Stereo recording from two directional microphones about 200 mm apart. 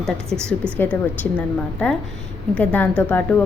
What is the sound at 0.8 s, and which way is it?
A woman's voice, 10° left (ahead or behind).